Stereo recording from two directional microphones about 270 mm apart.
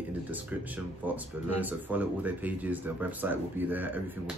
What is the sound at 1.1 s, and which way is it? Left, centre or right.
Speech, centre.